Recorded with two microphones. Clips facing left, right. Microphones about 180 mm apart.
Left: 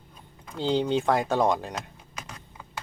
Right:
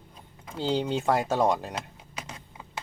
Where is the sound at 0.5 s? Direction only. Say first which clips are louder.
Left 3 dB; 10° right (ahead or behind).